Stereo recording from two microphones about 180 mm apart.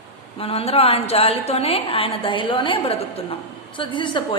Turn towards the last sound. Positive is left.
turn(degrees=25)  # may be behind; listen again after turning